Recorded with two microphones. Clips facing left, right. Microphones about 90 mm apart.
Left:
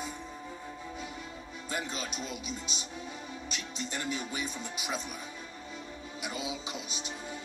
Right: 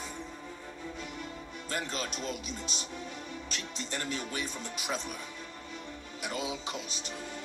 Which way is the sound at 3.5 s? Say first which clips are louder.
Left 1 dB; 10° left (ahead or behind).